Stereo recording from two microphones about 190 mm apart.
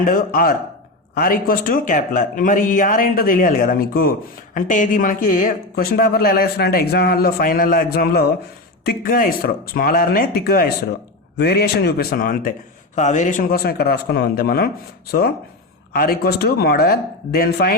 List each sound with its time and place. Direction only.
0.0 s speech: 50° left (ahead or behind)
15.9 s speech: 50° left (ahead or behind)